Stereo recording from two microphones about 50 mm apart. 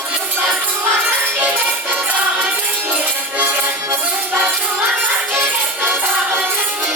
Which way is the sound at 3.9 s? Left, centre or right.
Right.